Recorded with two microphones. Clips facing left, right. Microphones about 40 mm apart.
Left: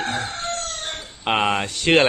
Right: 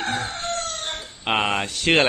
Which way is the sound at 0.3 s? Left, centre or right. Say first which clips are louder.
Even; left.